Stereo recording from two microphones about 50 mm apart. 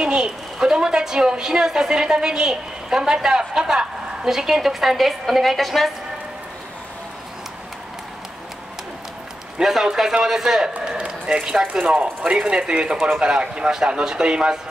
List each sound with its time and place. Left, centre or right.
0.0 s a woman's voice: centre
9.6 s a woman's voice: centre